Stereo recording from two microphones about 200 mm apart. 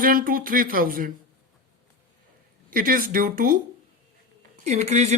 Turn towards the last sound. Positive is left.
turn(degrees=-35)  # may be behind; listen again after turning